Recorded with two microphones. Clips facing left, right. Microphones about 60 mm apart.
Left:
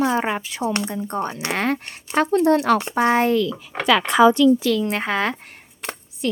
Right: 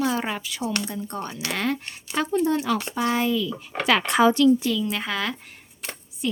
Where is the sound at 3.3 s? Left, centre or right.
Left.